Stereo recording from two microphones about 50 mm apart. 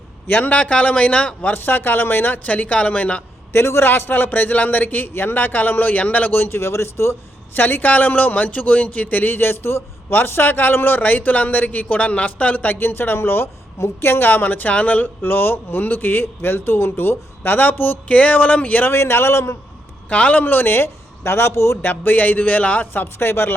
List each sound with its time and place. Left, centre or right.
0.3 s a man's voice: left
1.4 s a man's voice: left
3.5 s a man's voice: left
6.4 s speech: left
7.5 s a man's voice: left
12.8 s a man's voice: left
15.2 s speech: left
18.1 s a man's voice: left
18.9 s speech: left
20.1 s a man's voice: left
21.8 s a man's voice: left
23.0 s speech: left